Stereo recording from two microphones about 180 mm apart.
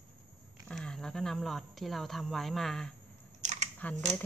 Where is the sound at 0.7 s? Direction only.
5° left (ahead or behind).